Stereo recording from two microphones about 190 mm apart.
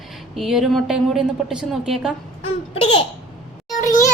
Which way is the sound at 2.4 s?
30° left (ahead or behind).